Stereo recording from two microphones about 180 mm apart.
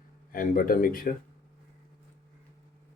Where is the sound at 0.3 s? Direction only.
50° left (ahead or behind).